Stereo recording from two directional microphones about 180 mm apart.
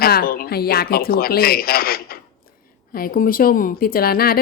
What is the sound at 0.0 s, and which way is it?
A woman's voice, 55° left (ahead or behind).